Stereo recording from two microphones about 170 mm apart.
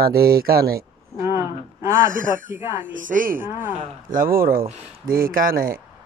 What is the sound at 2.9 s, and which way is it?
Speech, 50° right (ahead or behind).